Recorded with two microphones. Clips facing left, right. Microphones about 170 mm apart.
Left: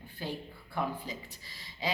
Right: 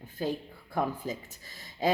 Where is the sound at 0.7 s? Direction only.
45° right (ahead or behind).